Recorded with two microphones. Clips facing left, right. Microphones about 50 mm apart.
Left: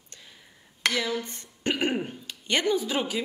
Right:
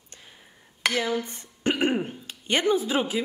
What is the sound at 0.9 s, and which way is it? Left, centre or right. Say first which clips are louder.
Speech: right 2 dB; right.